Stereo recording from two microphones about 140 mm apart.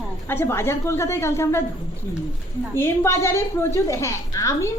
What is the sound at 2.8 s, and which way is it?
A woman's voice, 15° left (ahead or behind).